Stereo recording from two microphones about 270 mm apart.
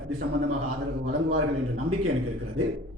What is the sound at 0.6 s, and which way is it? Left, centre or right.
A man's voice, right.